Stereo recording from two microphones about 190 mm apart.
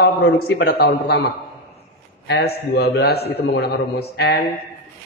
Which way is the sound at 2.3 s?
60° left (ahead or behind).